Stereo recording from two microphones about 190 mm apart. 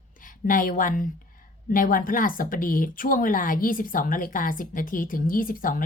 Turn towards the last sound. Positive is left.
turn(degrees=45)  # may be behind; listen again after turning